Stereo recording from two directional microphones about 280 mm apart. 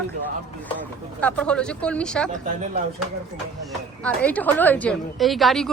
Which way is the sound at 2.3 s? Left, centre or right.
Right.